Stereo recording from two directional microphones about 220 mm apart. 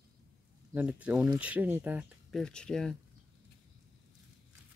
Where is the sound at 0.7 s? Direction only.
5° right (ahead or behind).